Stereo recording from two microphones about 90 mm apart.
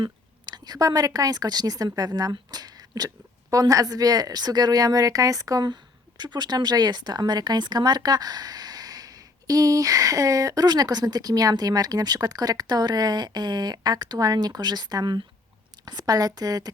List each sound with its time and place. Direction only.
0.0 s a woman's voice: 50° right (ahead or behind)